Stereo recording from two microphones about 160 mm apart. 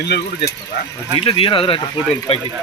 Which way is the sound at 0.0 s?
90° left.